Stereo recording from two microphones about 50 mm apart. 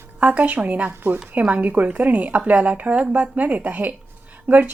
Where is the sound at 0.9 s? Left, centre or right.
Right.